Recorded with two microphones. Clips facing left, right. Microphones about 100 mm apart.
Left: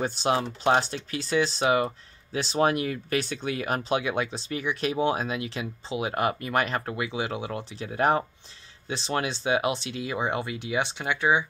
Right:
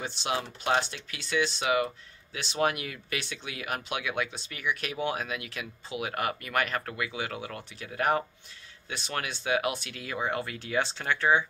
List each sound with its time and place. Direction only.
0.0 s speech: 40° left (ahead or behind); by 11.4 s 15° left (ahead or behind)